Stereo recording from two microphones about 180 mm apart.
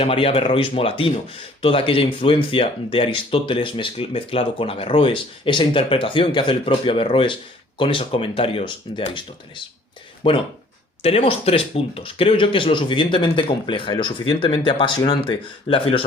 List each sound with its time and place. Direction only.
0.0 s speech: 30° left (ahead or behind)
10.2 s speech: 30° left (ahead or behind)